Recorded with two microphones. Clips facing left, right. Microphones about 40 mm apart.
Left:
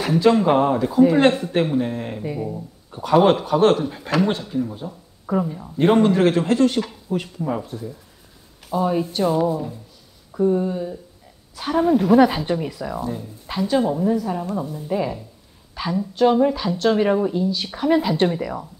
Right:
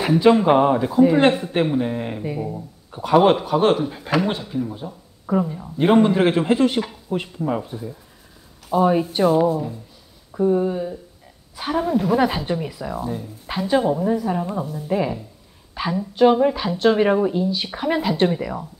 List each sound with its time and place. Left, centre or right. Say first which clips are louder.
0.1 s a man's voice: right 1 dB; centre
9.2 s a man's voice: right 3 dB; centre
11.8 s a man's voice: left 5 dB; centre